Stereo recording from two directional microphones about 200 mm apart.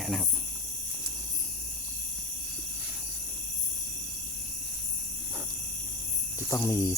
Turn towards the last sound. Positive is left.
turn(degrees=15)  # may be behind; listen again after turning